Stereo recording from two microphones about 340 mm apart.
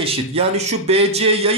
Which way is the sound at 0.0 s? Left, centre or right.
Centre.